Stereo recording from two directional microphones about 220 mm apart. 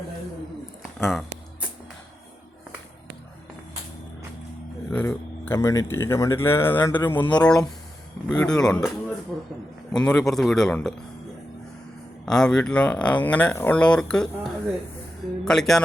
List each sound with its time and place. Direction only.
4.9 s speech: 10° left (ahead or behind)
12.2 s speech: 5° left (ahead or behind)